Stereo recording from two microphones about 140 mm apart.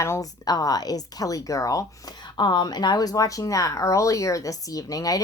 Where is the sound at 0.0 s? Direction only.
25° left (ahead or behind).